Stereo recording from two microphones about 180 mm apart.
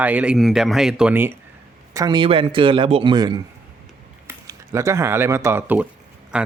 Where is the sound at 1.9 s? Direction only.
25° right (ahead or behind).